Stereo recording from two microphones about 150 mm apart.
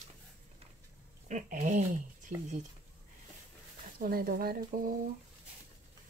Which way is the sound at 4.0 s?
75° right (ahead or behind).